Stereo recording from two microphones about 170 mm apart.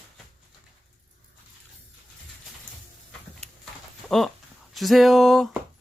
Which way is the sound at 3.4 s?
Centre (ahead or behind).